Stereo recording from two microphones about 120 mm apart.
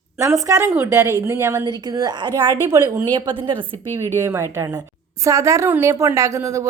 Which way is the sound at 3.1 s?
35° right (ahead or behind).